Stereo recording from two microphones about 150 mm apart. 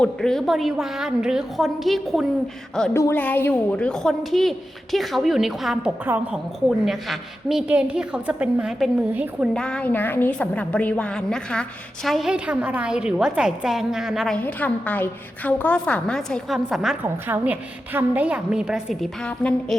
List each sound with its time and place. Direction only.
0.0 s a woman's voice: 5° left (ahead or behind)
2.9 s a woman's voice: 15° left (ahead or behind); by 9.5 s 10° right (ahead or behind)
9.5 s a woman's voice: 5° left (ahead or behind)
14.3 s a woman's voice: 10° left (ahead or behind)